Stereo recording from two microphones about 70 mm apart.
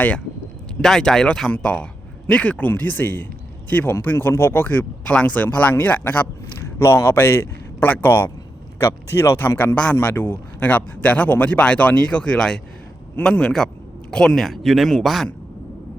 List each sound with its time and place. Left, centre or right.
0.8 s speech: centre; by 6.2 s left
6.7 s a man's voice: left
9.9 s speech: left; by 15.3 s centre